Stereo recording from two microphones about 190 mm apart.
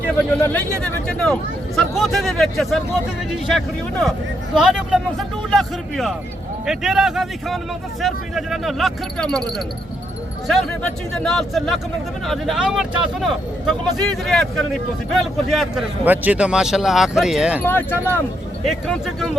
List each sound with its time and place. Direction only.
0.2 s speech: 10° left (ahead or behind)
17.6 s speech: 10° left (ahead or behind)
18.6 s speech: centre (ahead or behind)